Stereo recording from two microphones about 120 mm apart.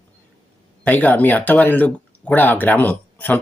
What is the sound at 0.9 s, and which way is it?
Speech, 15° left (ahead or behind).